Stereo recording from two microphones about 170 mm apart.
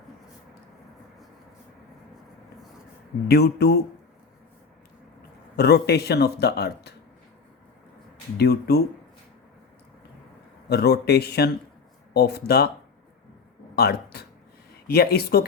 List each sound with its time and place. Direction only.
3.2 s speech: 70° left (ahead or behind)
5.5 s speech: 70° left (ahead or behind)
8.4 s speech: 70° left (ahead or behind)
10.7 s speech: 70° left (ahead or behind)
13.7 s speech: 70° left (ahead or behind)